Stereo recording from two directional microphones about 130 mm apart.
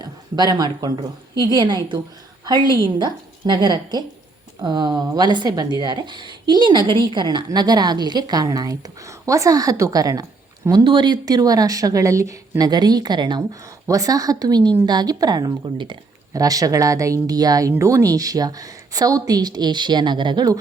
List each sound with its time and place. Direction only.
0.0 s a woman's voice: 30° right (ahead or behind)